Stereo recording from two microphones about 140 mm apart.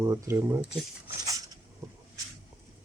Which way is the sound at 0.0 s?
20° right (ahead or behind).